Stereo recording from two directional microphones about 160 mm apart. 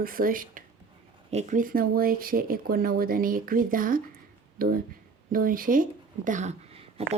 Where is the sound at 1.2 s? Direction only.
45° right (ahead or behind).